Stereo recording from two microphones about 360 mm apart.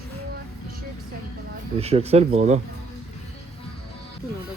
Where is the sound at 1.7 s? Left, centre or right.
Centre.